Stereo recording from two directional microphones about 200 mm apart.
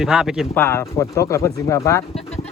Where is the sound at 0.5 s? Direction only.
10° left (ahead or behind).